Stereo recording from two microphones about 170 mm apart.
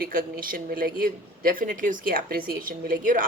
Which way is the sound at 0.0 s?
60° right (ahead or behind).